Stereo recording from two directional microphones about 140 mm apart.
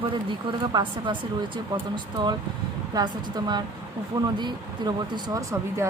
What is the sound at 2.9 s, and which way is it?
Speech, 30° right (ahead or behind).